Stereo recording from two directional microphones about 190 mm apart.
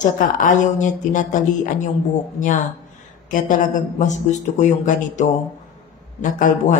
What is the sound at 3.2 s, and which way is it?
Speech, 45° left (ahead or behind).